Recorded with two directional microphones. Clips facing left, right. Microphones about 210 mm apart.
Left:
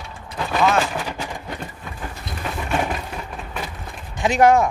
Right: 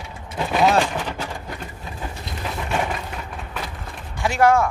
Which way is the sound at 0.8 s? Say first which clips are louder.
Right 1 dB; 10° left (ahead or behind).